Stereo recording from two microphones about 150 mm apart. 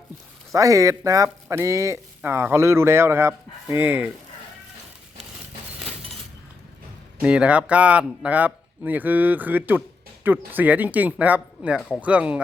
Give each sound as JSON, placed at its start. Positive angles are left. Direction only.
{"t": 0.5, "sound": "speech", "side_deg": -20}
{"t": 7.2, "sound": "speech", "side_deg": -5}